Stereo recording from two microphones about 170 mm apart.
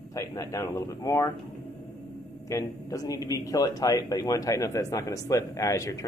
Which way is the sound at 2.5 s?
20° left (ahead or behind).